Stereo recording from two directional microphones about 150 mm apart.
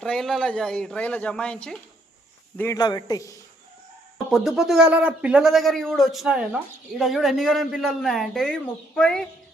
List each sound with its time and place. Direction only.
0.0 s a man's voice: 5° left (ahead or behind)
2.7 s a man's voice: 25° left (ahead or behind)
4.3 s a man's voice: centre (ahead or behind)